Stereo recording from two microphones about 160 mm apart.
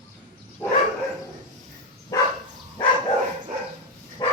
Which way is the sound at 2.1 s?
20° left (ahead or behind).